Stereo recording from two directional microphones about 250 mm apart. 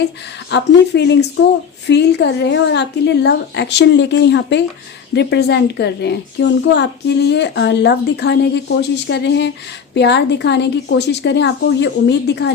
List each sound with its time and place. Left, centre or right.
0.5 s a child's voice: left